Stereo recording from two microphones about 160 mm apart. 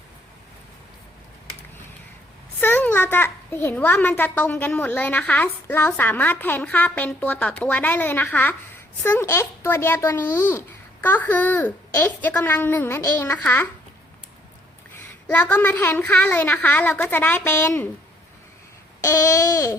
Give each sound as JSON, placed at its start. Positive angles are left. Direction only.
{"t": 2.6, "sound": "a child's voice", "side_deg": 10}
{"t": 15.3, "sound": "a child's voice", "side_deg": 10}
{"t": 19.0, "sound": "babbling", "side_deg": 20}